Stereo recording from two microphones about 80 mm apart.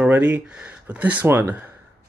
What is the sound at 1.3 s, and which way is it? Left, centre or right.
Speech, right.